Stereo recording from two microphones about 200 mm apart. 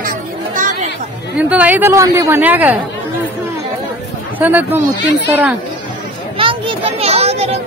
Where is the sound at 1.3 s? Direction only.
5° right (ahead or behind).